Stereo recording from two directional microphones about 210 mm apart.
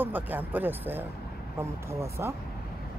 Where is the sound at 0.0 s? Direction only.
10° right (ahead or behind).